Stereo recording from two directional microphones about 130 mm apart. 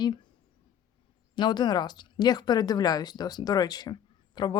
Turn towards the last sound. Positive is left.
turn(degrees=35)  # may be behind; listen again after turning